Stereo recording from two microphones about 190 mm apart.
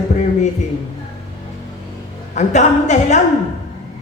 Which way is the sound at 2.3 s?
40° left (ahead or behind).